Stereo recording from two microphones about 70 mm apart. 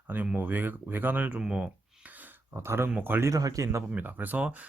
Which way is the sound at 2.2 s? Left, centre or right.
Right.